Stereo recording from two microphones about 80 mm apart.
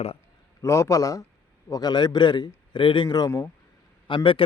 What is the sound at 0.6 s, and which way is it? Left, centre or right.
Speech, left.